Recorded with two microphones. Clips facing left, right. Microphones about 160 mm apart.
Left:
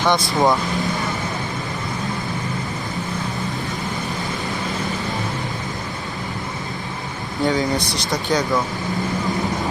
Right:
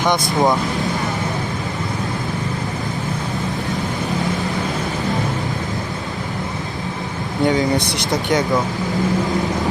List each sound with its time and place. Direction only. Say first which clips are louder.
0.3 s speech: right 1 dB; centre (ahead or behind)
7.4 s speech: right 3 dB; 20° right (ahead or behind)